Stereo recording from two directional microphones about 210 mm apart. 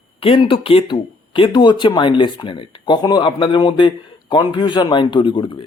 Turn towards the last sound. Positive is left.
turn(degrees=25)  # may be behind; listen again after turning